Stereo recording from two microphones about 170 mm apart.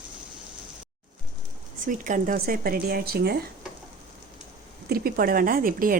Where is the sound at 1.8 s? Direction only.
50° right (ahead or behind).